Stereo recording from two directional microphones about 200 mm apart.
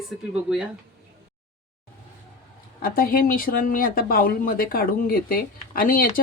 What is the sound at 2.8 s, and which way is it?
Speech, 45° left (ahead or behind).